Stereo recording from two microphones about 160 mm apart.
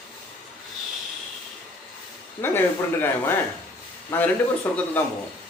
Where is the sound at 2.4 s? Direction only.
15° left (ahead or behind).